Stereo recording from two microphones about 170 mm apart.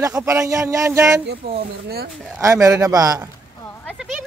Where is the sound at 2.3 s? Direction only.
15° right (ahead or behind).